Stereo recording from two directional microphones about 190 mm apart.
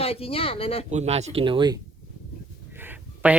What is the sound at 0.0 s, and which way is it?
Speech, 30° left (ahead or behind).